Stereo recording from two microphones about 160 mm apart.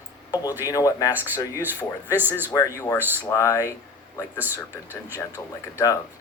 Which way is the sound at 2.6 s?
20° left (ahead or behind).